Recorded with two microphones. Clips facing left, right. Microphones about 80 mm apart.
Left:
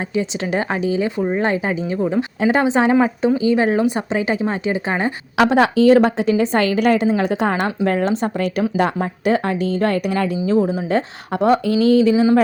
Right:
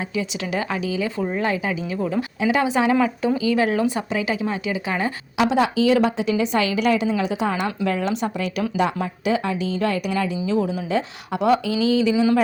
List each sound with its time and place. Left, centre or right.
0.1 s a woman's voice: left
4.2 s a woman's voice: left
5.4 s a woman's voice: left
7.3 s a woman's voice: left